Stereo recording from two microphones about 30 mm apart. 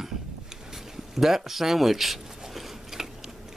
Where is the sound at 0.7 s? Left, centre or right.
Centre.